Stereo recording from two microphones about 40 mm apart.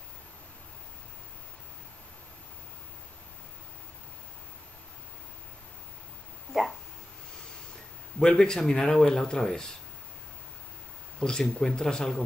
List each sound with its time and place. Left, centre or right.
8.2 s speech: centre
11.1 s speech: centre